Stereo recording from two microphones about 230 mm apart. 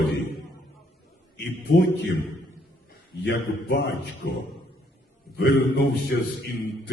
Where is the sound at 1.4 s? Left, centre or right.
Left.